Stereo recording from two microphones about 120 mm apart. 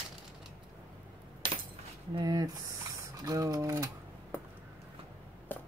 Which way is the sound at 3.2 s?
30° right (ahead or behind).